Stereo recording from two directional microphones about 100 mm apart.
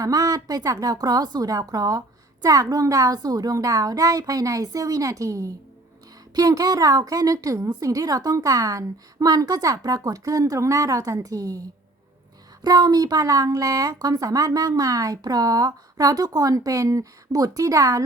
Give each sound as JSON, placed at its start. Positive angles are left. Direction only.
{"t": 0.0, "sound": "a woman's voice", "side_deg": -35}
{"t": 12.6, "sound": "a woman's voice", "side_deg": -40}